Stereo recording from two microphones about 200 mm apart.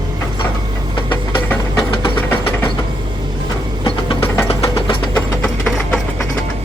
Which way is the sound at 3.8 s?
25° left (ahead or behind).